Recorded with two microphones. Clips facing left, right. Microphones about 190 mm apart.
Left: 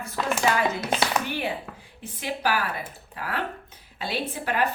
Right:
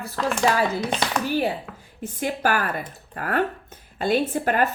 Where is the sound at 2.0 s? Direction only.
50° right (ahead or behind).